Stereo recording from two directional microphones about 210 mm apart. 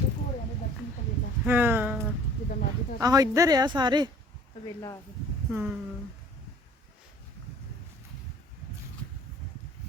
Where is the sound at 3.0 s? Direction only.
15° right (ahead or behind).